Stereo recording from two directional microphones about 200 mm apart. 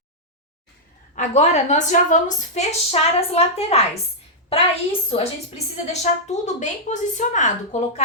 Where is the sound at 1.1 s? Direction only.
35° left (ahead or behind).